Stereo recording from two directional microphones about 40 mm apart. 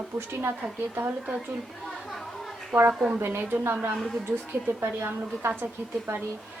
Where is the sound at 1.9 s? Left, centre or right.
Centre.